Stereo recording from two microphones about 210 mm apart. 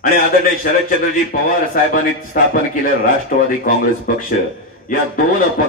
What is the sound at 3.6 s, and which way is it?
A man's voice, 40° left (ahead or behind).